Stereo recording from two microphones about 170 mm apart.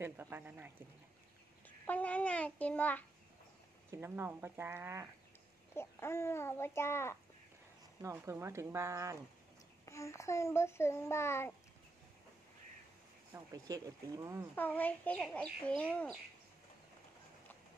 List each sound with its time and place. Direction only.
0.0 s speech: 15° right (ahead or behind)
1.9 s a child's voice: 10° left (ahead or behind)
3.9 s speech: 15° right (ahead or behind)
5.8 s a child's voice: 15° left (ahead or behind)
8.0 s speech: 15° right (ahead or behind)
9.8 s a child's voice: 15° left (ahead or behind)
13.3 s speech: 20° right (ahead or behind)
14.5 s a child's voice: 10° left (ahead or behind)